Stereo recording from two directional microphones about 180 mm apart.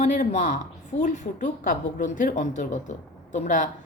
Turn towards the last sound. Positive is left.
turn(degrees=45)  # may be behind; listen again after turning